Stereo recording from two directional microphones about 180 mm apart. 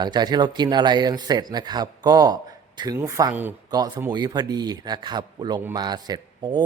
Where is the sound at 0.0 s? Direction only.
25° right (ahead or behind).